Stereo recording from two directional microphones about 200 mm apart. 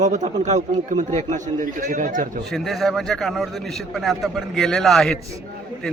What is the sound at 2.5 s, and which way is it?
A man's voice, centre (ahead or behind).